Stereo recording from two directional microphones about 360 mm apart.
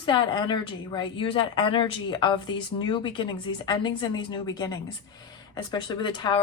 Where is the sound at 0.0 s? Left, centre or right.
Centre.